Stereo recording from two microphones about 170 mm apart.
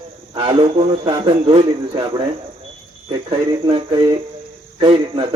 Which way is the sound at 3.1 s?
30° right (ahead or behind).